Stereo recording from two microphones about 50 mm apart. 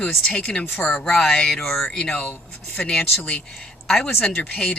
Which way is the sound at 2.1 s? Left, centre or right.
Left.